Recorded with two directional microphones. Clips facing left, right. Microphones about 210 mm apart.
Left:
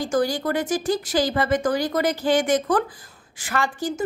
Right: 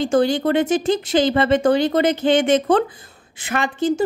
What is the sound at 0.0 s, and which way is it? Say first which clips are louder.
Speech: right 5 dB; 25° right (ahead or behind).